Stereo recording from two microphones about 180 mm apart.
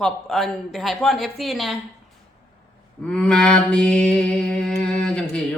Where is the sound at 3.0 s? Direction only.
5° left (ahead or behind).